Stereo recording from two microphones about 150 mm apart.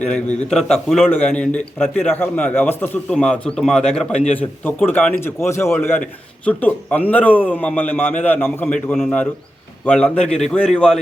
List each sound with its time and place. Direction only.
0.5 s a man's voice: 5° left (ahead or behind)